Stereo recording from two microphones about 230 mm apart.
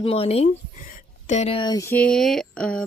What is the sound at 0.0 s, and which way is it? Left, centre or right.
A woman's voice, left.